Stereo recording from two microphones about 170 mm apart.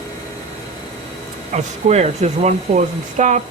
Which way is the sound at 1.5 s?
40° right (ahead or behind).